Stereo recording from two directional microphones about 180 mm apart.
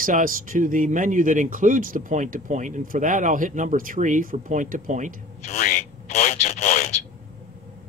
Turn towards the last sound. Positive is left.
turn(degrees=40)  # may be behind; listen again after turning